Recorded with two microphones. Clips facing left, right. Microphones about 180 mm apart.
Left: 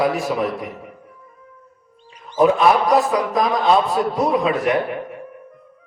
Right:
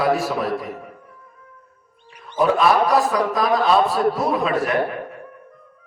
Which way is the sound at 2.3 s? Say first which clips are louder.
Left 2 dB; 20° left (ahead or behind).